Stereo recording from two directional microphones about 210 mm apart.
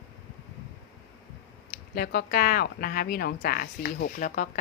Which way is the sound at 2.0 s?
45° left (ahead or behind).